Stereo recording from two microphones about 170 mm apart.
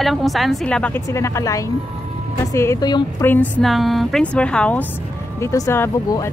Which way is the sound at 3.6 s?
Centre (ahead or behind).